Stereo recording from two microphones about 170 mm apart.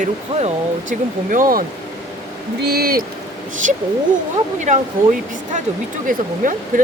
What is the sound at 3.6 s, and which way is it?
Speech, 50° right (ahead or behind).